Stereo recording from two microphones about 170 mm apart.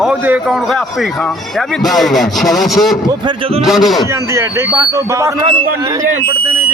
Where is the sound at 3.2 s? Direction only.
30° right (ahead or behind).